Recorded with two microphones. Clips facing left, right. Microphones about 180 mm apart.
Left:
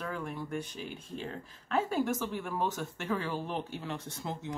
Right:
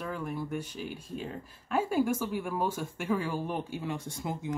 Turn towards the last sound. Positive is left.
turn(degrees=-10)  # may be behind; listen again after turning